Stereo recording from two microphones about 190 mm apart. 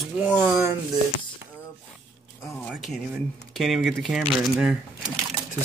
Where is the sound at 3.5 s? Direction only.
Centre (ahead or behind).